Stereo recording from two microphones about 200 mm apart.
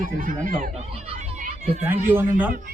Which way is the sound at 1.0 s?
30° right (ahead or behind).